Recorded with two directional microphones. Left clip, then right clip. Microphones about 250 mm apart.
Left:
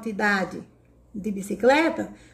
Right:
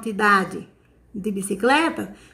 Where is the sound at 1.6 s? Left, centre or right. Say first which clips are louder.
Even; centre.